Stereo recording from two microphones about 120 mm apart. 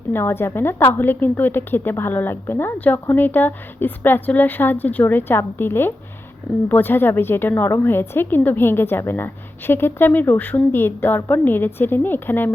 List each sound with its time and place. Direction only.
0.1 s a woman's voice: 20° left (ahead or behind)